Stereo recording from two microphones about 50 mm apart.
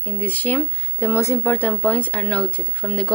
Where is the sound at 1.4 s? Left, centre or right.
Left.